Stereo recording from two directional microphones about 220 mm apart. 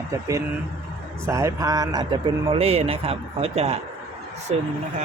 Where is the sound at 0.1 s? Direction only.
15° right (ahead or behind); by 4.6 s 30° right (ahead or behind).